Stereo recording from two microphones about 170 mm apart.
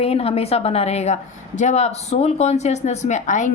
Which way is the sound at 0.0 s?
35° left (ahead or behind).